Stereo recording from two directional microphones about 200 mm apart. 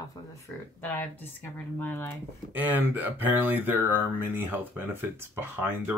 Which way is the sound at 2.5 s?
10° right (ahead or behind).